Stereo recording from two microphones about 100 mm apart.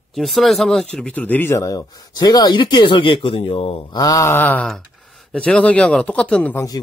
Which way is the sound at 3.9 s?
40° left (ahead or behind).